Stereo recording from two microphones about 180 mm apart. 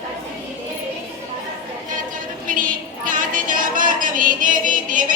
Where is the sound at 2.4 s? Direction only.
50° right (ahead or behind).